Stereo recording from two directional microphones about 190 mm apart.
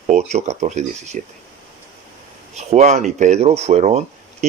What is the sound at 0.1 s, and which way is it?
Speech, 35° right (ahead or behind).